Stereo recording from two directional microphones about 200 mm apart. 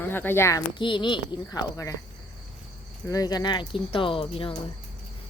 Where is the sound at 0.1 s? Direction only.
10° left (ahead or behind).